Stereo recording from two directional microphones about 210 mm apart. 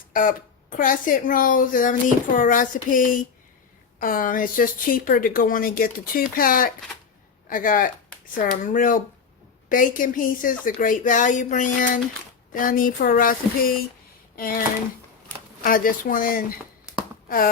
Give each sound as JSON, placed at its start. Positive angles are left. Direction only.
{"t": 0.1, "sound": "speech", "side_deg": 40}
{"t": 14.3, "sound": "speech", "side_deg": 45}
{"t": 15.6, "sound": "speech", "side_deg": 40}
{"t": 17.2, "sound": "a sound", "side_deg": 45}